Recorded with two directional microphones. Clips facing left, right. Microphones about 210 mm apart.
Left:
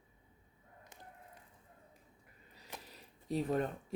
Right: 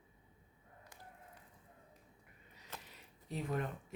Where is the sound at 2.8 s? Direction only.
35° left (ahead or behind).